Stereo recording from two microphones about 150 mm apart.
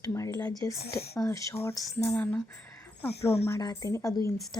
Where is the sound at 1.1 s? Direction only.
20° left (ahead or behind).